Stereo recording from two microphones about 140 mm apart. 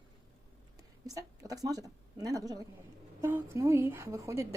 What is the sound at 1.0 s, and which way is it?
A woman's voice, 25° right (ahead or behind).